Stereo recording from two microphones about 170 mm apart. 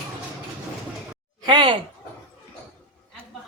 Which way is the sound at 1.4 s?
30° right (ahead or behind).